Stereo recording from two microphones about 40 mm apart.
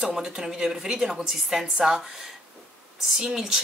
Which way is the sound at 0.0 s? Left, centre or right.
Centre.